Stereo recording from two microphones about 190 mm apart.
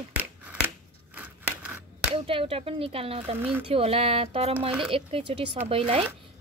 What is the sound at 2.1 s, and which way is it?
Speech, 30° right (ahead or behind).